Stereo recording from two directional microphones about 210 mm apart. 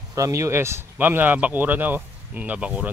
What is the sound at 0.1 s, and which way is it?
Speech, 15° right (ahead or behind).